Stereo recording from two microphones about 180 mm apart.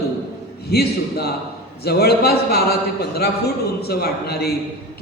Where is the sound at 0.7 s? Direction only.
60° left (ahead or behind).